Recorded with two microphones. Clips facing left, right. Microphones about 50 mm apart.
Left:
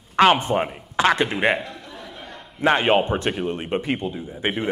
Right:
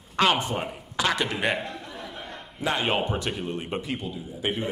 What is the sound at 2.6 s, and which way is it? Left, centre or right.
A man's voice, left.